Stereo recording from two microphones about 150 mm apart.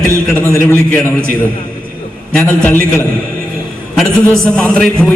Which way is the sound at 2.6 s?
15° left (ahead or behind).